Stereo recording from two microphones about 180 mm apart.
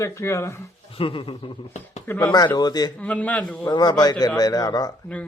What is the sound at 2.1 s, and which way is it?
Speech, 15° left (ahead or behind).